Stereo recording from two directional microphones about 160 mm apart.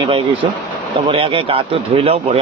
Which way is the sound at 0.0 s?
35° right (ahead or behind).